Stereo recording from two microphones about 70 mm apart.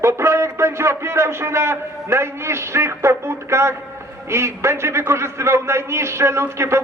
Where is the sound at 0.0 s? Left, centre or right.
Right.